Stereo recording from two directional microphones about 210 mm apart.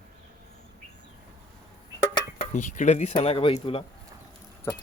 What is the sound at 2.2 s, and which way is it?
Speech, 25° left (ahead or behind).